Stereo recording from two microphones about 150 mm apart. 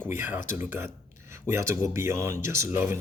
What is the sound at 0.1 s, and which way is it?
Speech, 15° right (ahead or behind).